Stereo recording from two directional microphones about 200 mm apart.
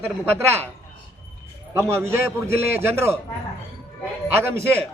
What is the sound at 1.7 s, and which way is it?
A man's voice, 15° right (ahead or behind).